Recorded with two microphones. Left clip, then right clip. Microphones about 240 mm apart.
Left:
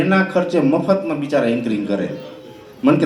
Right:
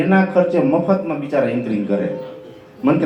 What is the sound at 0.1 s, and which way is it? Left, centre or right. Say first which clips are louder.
A man's voice: right 1 dB; left.